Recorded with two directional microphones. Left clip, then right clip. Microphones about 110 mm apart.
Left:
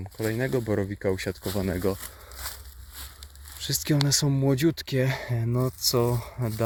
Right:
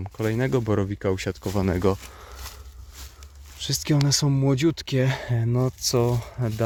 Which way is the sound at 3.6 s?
15° right (ahead or behind).